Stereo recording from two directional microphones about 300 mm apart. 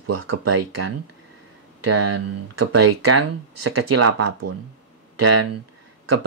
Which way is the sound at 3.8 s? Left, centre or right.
Right.